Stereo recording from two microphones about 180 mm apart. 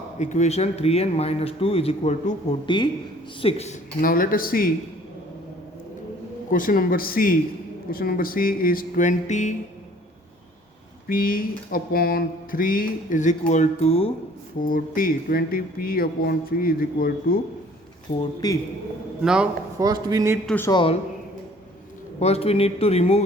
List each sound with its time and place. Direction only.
0.2 s speech: 40° left (ahead or behind)
2.6 s a man's voice: 25° left (ahead or behind)
3.4 s speech: 35° left (ahead or behind)
4.0 s a sound: 50° left (ahead or behind)
6.5 s a sound: 50° left (ahead or behind)
11.1 s a sound: 50° left (ahead or behind); by 14.1 s 35° left (ahead or behind)
14.6 s speech: 50° left (ahead or behind)
18.2 s a man's voice: 20° left (ahead or behind)
19.2 s a man's voice: 5° right (ahead or behind)
19.8 s speech: 20° right (ahead or behind)
20.7 s a man's voice: 30° left (ahead or behind)
22.2 s speech: 35° left (ahead or behind)